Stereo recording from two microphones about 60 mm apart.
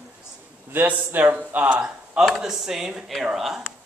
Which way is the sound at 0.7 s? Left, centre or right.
Right.